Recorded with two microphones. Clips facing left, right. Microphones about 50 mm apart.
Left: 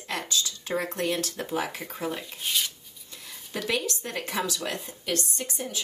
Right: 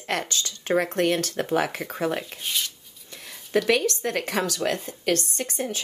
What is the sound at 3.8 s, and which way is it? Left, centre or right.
A woman's voice, right.